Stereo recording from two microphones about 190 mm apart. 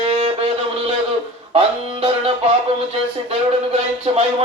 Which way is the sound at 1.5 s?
30° right (ahead or behind).